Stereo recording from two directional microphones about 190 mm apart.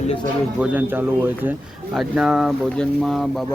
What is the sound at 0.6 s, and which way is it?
Speech, 10° right (ahead or behind).